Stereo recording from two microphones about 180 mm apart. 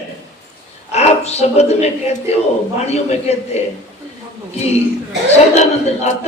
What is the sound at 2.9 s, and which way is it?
Speech, 35° left (ahead or behind).